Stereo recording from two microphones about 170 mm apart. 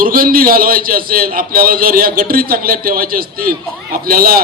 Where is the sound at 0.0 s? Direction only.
55° right (ahead or behind).